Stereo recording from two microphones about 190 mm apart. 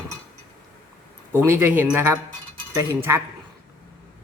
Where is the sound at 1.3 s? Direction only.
10° right (ahead or behind).